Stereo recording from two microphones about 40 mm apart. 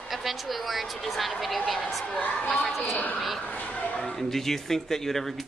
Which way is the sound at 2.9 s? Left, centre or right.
Left.